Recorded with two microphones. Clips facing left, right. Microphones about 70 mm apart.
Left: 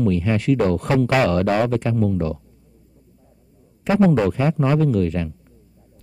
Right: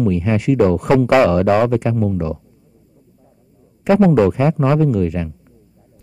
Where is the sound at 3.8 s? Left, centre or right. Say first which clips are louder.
Right 4 dB; right.